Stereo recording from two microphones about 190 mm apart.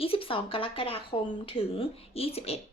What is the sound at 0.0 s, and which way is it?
Speech, 30° left (ahead or behind).